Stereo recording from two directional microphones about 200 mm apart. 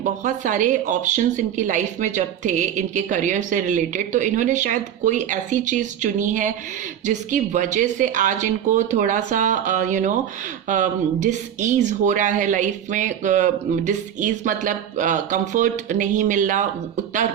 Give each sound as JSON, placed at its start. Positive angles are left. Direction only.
{"t": 0.0, "sound": "speech", "side_deg": -40}